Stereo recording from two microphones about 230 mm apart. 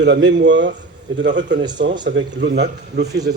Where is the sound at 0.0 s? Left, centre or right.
Right.